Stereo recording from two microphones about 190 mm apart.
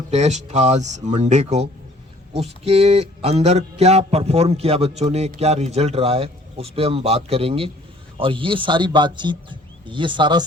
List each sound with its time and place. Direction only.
0.1 s speech: 35° right (ahead or behind)